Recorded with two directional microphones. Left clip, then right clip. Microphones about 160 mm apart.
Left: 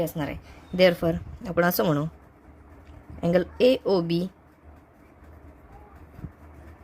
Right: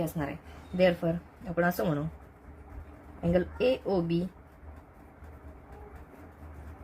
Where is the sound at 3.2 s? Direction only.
60° left (ahead or behind).